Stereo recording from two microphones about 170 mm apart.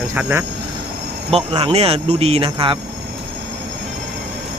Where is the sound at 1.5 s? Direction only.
35° right (ahead or behind).